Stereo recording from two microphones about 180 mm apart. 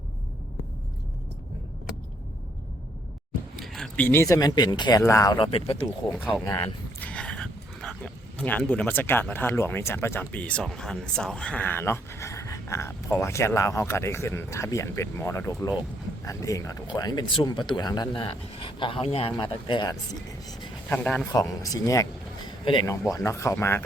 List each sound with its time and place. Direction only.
3.5 s speech: centre (ahead or behind); by 5.7 s 30° left (ahead or behind)
5.7 s speech: 5° left (ahead or behind); by 20.0 s 25° left (ahead or behind)
20.9 s speech: 5° left (ahead or behind)
21.3 s speech: 20° left (ahead or behind)
22.4 s a sound: 30° left (ahead or behind)
22.9 s speech: 15° left (ahead or behind)